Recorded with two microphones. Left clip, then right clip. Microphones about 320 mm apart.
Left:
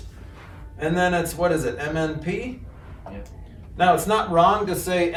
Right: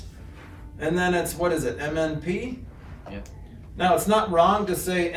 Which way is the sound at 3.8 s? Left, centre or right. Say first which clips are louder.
Left 2 dB; centre.